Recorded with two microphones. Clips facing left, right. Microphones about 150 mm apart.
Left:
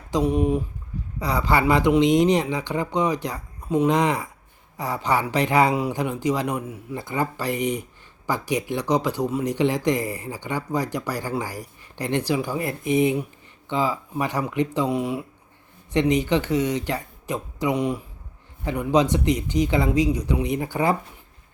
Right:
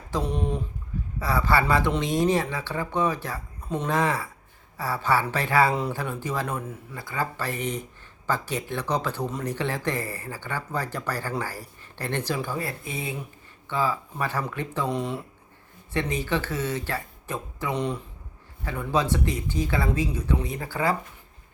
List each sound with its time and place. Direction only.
0.1 s speech: 10° left (ahead or behind)
15.9 s speech: 20° left (ahead or behind)